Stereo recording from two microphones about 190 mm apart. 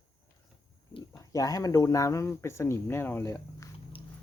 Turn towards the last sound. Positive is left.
turn(degrees=15)  # may be behind; listen again after turning